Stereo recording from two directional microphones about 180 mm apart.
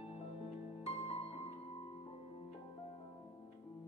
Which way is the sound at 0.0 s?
35° left (ahead or behind).